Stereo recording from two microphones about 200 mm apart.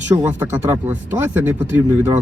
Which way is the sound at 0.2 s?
10° right (ahead or behind).